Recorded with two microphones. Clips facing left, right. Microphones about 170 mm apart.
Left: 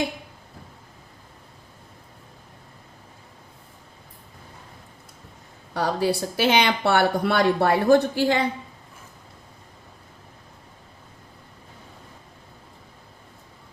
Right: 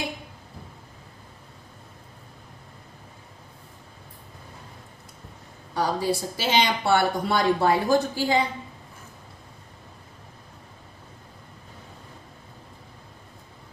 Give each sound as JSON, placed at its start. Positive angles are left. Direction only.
{"t": 5.7, "sound": "speech", "side_deg": 65}